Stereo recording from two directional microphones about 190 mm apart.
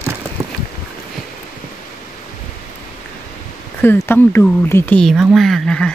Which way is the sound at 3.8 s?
10° left (ahead or behind).